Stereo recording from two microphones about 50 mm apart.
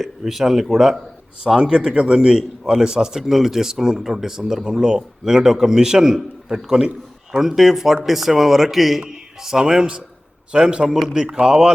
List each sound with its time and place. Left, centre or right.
0.0 s a man's voice: centre
1.5 s speech: centre
7.3 s a man's voice: centre